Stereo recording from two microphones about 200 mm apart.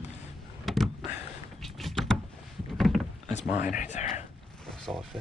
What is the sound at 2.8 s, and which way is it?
Rowboat, centre (ahead or behind).